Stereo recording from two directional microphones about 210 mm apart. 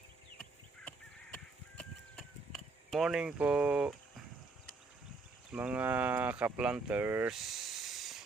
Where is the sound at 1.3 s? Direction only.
5° left (ahead or behind).